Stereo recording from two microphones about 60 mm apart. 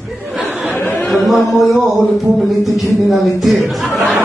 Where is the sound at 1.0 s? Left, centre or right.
Centre.